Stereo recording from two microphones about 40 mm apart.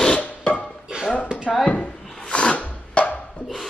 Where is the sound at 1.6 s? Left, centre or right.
Left.